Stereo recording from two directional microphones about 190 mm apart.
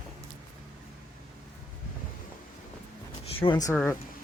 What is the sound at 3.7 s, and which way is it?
Speech, 10° left (ahead or behind).